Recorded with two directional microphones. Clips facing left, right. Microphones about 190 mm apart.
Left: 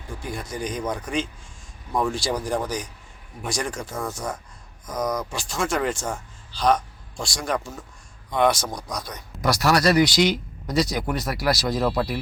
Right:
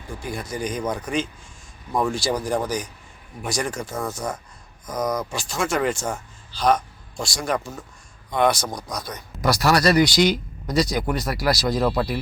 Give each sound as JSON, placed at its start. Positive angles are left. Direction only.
{"t": 0.2, "sound": "speech", "side_deg": 0}